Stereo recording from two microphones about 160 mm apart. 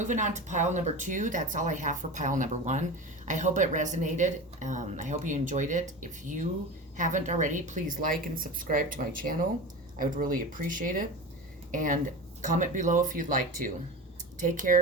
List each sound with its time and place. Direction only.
0.0 s speech: 50° right (ahead or behind)